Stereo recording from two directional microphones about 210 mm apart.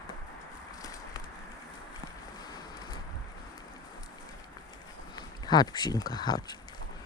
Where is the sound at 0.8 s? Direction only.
15° left (ahead or behind).